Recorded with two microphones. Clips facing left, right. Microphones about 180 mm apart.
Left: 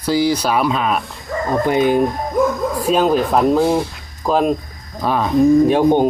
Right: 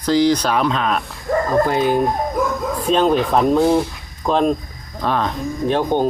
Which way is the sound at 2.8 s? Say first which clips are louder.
Even; 5° left (ahead or behind).